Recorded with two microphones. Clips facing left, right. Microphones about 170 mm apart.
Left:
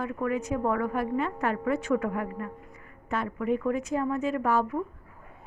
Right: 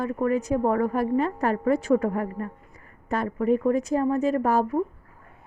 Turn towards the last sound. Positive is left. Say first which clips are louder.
# right 4 dB
turn(degrees=-40)  # may be behind; listen again after turning